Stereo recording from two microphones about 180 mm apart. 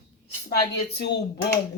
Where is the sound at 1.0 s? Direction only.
70° left (ahead or behind).